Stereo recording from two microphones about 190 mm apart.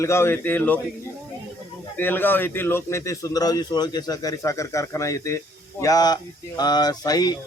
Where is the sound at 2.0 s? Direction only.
10° left (ahead or behind).